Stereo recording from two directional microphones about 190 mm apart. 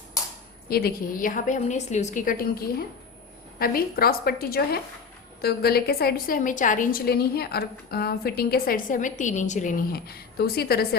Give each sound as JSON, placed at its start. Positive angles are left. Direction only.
{"t": 0.7, "sound": "a woman's voice", "side_deg": 55}